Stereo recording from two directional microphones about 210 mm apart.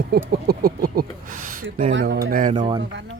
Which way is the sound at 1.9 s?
55° right (ahead or behind).